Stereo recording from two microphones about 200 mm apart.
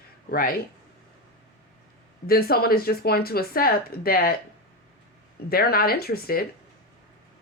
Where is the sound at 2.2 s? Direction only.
50° left (ahead or behind).